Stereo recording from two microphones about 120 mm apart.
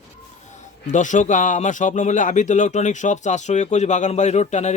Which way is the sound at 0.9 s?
90° left.